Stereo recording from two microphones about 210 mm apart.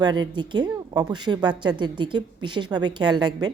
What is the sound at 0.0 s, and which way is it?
A woman's voice, 20° right (ahead or behind).